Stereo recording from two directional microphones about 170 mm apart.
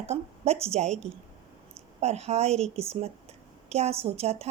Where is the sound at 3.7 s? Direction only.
40° right (ahead or behind).